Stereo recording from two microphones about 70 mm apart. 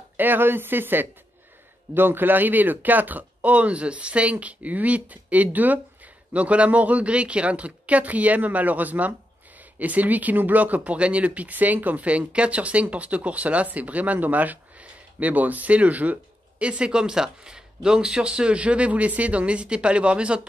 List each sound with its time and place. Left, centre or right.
0.2 s speech: right; by 20.4 s centre